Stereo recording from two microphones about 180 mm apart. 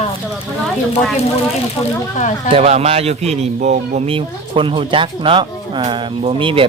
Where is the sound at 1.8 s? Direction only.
40° left (ahead or behind).